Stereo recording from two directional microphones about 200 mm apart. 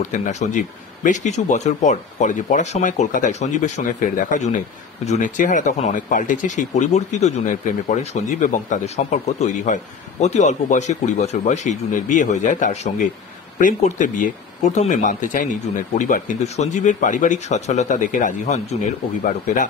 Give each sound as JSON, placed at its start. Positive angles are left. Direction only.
{"t": 0.0, "sound": "speech", "side_deg": 35}